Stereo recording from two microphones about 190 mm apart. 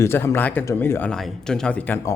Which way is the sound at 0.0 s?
15° left (ahead or behind).